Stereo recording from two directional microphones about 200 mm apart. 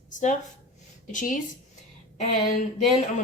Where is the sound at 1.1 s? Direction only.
40° left (ahead or behind).